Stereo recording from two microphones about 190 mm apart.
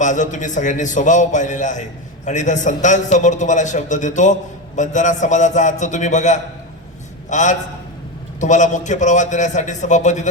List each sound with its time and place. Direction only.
0.0 s a man's voice: 40° left (ahead or behind)